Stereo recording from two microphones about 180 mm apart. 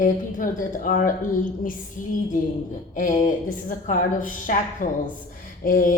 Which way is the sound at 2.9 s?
45° left (ahead or behind).